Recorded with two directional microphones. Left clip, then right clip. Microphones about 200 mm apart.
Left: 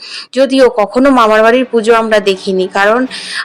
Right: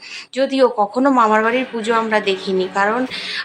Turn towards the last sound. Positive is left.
turn(degrees=30)  # may be behind; listen again after turning